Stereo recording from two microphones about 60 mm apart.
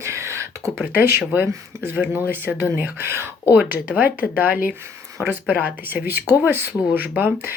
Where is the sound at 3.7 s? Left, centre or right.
Right.